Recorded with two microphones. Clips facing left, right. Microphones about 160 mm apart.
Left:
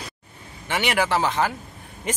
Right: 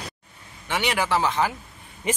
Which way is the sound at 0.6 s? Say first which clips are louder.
Left 2 dB; 5° left (ahead or behind).